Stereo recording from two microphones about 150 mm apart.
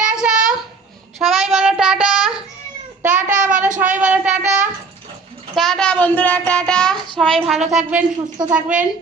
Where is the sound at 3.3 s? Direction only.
60° right (ahead or behind).